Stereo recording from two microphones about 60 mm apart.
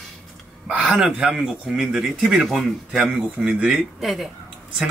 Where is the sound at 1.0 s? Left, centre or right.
Centre.